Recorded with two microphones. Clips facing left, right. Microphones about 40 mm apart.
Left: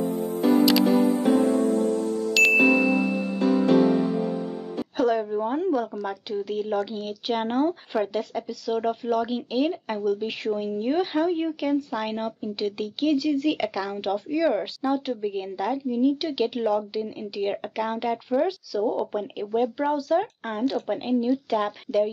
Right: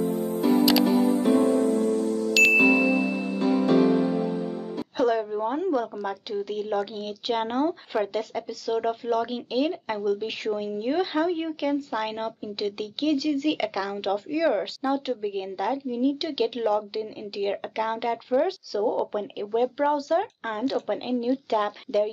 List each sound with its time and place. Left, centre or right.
0.9 s music: left
2.3 s ding: centre
4.9 s speech: centre